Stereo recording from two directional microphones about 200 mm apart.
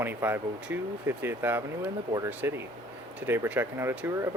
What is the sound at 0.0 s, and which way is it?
Speech, 10° right (ahead or behind).